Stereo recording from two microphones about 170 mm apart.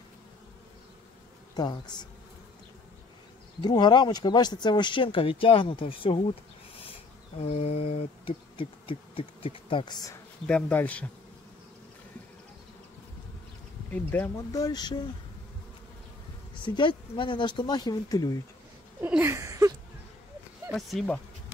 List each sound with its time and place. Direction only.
1.5 s speech: 25° left (ahead or behind)
3.6 s speech: 25° left (ahead or behind)
7.3 s mantra: 40° left (ahead or behind); by 10.1 s 25° left (ahead or behind)
10.4 s speech: 10° left (ahead or behind)
13.8 s speech: 10° left (ahead or behind)
16.5 s speech: 30° left (ahead or behind)
19.0 s a sound: 10° right (ahead or behind)
20.7 s speech: centre (ahead or behind)